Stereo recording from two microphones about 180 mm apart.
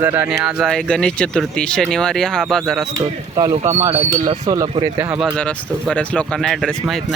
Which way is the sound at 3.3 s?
30° right (ahead or behind).